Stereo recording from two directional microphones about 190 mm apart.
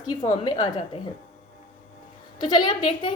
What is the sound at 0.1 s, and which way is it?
Speech, 25° left (ahead or behind).